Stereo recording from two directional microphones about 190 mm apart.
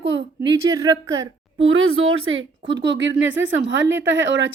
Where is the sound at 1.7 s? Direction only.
90° right.